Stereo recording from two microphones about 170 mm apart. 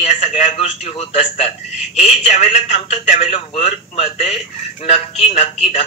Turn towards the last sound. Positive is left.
turn(degrees=40)  # may be behind; listen again after turning